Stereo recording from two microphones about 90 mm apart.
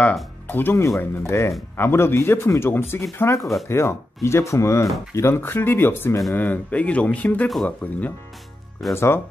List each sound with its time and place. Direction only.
0.0 s speech: 20° left (ahead or behind)
0.8 s speech: 35° left (ahead or behind); by 8.1 s 15° left (ahead or behind)
8.9 s speech: 25° left (ahead or behind)